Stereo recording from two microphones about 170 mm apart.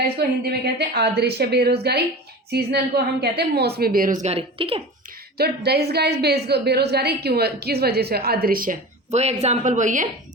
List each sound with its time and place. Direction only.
0.2 s a woman's voice: 70° right (ahead or behind)
3.8 s speech: 60° right (ahead or behind); by 4.8 s 35° right (ahead or behind)
5.4 s a woman's voice: 70° right (ahead or behind)
9.1 s speech: 40° right (ahead or behind)